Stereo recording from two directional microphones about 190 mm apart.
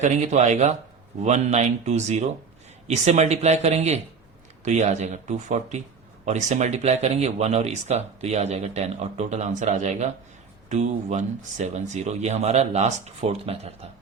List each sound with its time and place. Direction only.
0.0 s speech: 40° right (ahead or behind)